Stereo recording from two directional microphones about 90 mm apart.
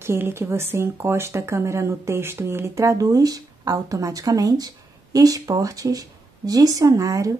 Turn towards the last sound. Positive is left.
turn(degrees=-40)  # may be behind; listen again after turning